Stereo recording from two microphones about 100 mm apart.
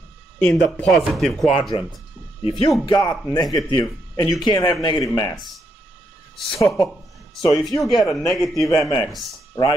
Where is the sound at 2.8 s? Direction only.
45° left (ahead or behind).